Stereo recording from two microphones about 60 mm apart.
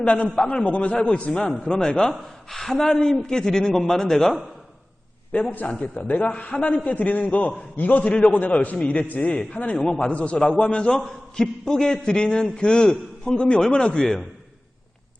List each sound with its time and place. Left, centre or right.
0.0 s a man's voice: left
5.3 s a man's voice: left
9.7 s a man's voice: centre